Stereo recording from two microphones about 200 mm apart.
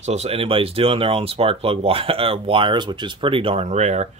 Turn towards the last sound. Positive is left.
turn(degrees=-35)  # may be behind; listen again after turning